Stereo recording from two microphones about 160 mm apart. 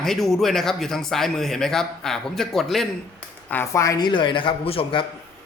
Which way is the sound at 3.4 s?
15° left (ahead or behind).